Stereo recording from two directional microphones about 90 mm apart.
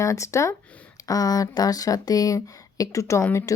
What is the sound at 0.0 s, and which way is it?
Speech, 35° left (ahead or behind).